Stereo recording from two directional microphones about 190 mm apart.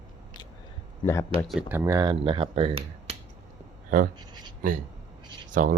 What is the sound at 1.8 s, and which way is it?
Speech, 20° right (ahead or behind).